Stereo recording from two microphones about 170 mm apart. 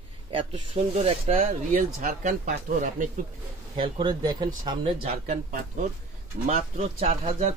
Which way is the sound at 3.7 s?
30° right (ahead or behind).